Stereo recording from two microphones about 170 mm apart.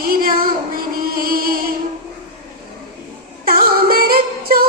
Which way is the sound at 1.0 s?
60° right (ahead or behind).